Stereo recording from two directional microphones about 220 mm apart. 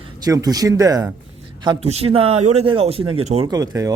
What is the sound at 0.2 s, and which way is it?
A man's voice, 15° right (ahead or behind).